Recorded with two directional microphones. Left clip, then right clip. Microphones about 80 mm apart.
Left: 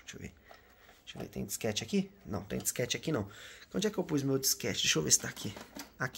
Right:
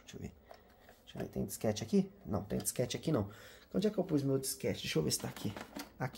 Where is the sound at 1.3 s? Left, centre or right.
Right.